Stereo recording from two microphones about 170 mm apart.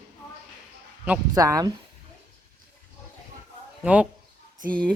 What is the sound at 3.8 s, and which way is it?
Speech, 10° right (ahead or behind).